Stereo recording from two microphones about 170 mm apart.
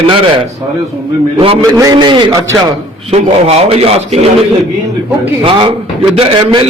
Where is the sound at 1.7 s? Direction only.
20° right (ahead or behind); by 4.2 s 35° right (ahead or behind).